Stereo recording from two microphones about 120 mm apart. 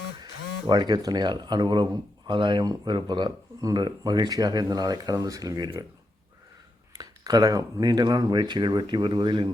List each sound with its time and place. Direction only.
0.7 s speech: 35° right (ahead or behind)
6.9 s speech: 35° right (ahead or behind)